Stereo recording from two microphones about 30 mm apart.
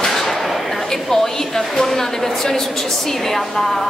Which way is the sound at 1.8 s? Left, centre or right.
Centre.